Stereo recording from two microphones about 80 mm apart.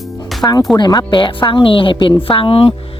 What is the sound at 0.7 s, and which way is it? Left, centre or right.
A woman's voice, left.